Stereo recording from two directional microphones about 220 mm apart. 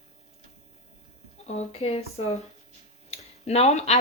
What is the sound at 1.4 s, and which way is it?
Speech, 30° left (ahead or behind).